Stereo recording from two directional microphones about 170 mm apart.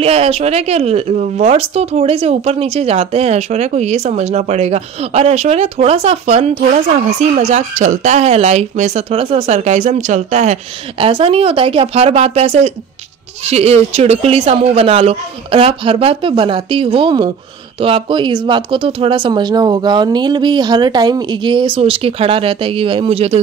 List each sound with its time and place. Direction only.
0.0 s speech: 35° right (ahead or behind)